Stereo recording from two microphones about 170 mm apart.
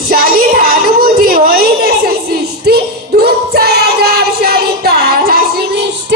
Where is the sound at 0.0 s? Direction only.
60° right (ahead or behind).